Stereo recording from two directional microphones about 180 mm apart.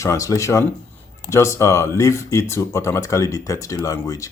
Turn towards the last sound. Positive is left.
turn(degrees=20)  # may be behind; listen again after turning